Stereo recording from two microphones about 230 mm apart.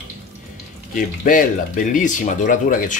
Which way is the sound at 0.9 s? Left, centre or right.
Left.